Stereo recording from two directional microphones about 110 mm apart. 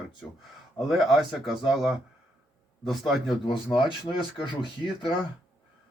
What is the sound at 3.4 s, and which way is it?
Speech, 45° left (ahead or behind).